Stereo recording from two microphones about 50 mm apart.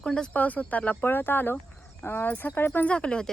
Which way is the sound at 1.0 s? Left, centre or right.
Left.